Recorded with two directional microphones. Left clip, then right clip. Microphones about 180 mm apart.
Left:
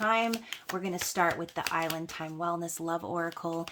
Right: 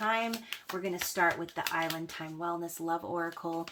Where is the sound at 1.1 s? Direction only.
45° left (ahead or behind).